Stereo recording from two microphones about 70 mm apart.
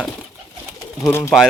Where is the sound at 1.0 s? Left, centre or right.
Left.